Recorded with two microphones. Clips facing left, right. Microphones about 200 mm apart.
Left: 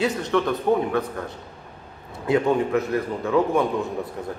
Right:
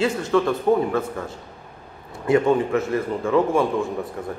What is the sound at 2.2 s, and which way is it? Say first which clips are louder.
A man's voice: right 2 dB; centre (ahead or behind).